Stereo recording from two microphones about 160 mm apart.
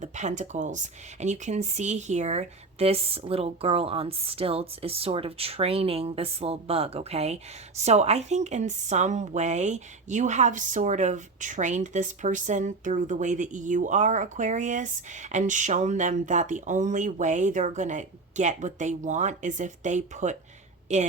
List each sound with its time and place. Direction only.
0.0 s speech: 50° right (ahead or behind)